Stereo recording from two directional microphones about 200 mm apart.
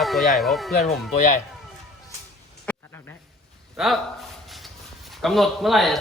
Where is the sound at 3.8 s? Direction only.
Centre (ahead or behind).